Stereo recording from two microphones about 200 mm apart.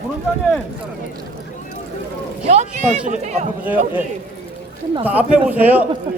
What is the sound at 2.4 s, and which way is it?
Speech, 35° right (ahead or behind).